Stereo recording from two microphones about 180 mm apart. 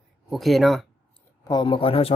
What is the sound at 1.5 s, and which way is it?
Speech, 25° left (ahead or behind).